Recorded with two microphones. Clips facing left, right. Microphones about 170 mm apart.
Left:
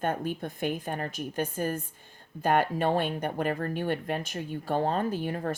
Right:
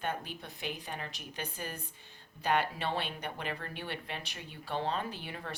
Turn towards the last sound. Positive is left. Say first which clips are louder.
# left 11 dB
turn(degrees=45)  # may be behind; listen again after turning